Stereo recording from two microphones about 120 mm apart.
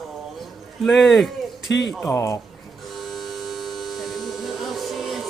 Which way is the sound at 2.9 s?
Centre (ahead or behind).